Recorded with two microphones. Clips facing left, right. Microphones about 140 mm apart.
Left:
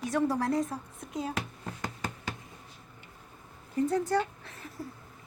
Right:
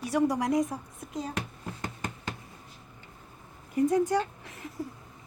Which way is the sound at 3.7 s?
15° right (ahead or behind).